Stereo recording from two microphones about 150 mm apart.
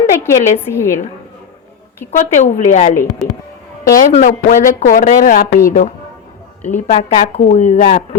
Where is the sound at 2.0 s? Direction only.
55° left (ahead or behind).